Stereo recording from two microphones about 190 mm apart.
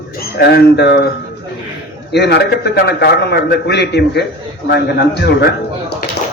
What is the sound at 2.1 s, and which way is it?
A man's voice, 65° left (ahead or behind).